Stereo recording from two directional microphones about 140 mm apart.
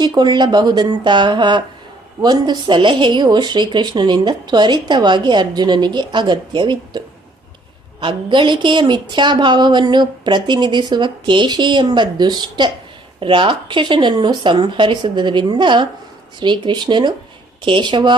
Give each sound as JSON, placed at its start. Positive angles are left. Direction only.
{"t": 0.0, "sound": "a woman's voice", "side_deg": -30}
{"t": 8.0, "sound": "a woman's voice", "side_deg": -35}